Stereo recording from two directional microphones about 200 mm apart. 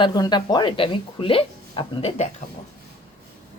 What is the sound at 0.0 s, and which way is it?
Speech, 20° left (ahead or behind).